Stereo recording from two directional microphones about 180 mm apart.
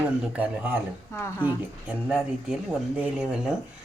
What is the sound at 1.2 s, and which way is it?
Speech, 15° left (ahead or behind).